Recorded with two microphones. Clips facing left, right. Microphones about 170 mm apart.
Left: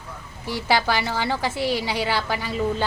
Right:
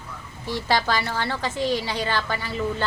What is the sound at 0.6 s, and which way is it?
A woman's voice, 10° left (ahead or behind).